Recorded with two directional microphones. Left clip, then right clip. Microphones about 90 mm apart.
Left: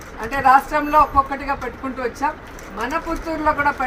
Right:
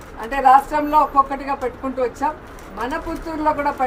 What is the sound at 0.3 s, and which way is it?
A woman's voice, 10° right (ahead or behind).